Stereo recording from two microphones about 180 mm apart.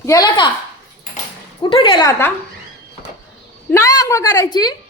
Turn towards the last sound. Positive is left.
turn(degrees=20)  # may be behind; listen again after turning